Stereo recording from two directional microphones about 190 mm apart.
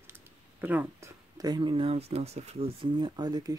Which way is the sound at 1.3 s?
20° right (ahead or behind).